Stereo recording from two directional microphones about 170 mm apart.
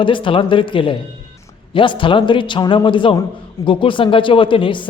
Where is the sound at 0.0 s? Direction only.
30° left (ahead or behind).